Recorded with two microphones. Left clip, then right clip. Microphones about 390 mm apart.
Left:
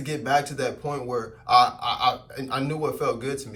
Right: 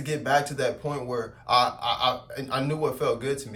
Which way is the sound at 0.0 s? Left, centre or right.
Centre.